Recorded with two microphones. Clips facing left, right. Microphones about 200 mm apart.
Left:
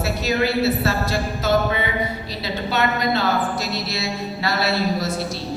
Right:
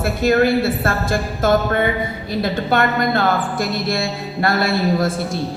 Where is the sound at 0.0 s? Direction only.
55° right (ahead or behind).